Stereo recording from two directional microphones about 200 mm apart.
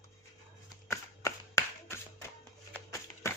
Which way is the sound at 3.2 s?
15° left (ahead or behind).